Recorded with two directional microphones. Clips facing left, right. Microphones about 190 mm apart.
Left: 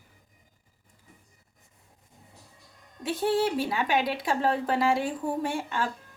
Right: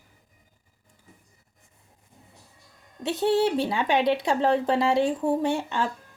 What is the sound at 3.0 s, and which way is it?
Speech, 25° right (ahead or behind).